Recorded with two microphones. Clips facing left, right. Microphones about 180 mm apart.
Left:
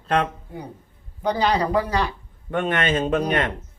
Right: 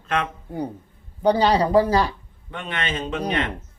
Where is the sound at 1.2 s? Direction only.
30° right (ahead or behind).